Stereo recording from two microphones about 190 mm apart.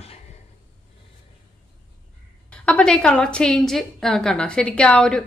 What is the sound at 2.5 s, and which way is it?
A woman's voice, 5° left (ahead or behind).